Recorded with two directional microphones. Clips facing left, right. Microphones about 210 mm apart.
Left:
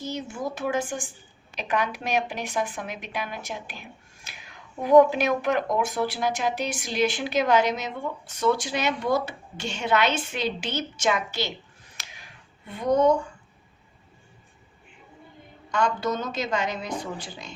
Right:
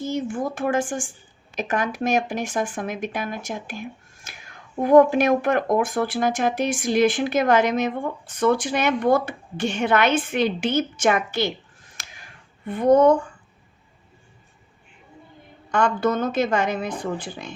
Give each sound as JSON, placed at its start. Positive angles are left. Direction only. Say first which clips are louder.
{"t": 0.0, "sound": "a woman's voice", "louder": "right 6 dB", "side_deg": -50}
{"t": 11.9, "sound": "finger snapping", "louder": "right 2 dB", "side_deg": -45}
{"t": 15.7, "sound": "speech", "louder": "right 4 dB", "side_deg": -55}